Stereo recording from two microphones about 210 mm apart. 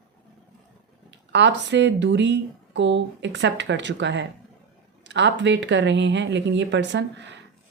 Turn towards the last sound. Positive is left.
turn(degrees=-60)  # may be behind; listen again after turning